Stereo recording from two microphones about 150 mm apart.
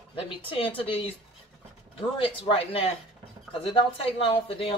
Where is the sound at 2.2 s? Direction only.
35° left (ahead or behind).